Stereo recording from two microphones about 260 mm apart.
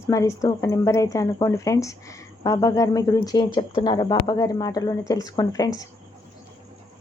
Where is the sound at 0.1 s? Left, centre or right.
Centre.